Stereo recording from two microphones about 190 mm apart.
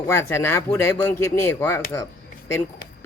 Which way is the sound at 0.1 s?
15° left (ahead or behind).